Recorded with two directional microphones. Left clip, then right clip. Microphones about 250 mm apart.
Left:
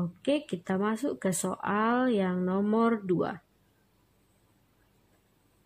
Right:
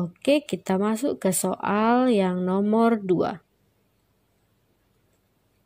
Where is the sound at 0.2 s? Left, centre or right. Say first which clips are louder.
Right 8 dB; right.